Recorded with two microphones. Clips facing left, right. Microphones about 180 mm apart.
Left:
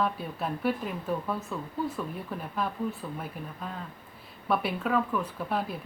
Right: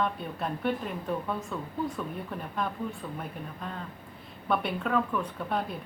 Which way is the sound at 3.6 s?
5° left (ahead or behind).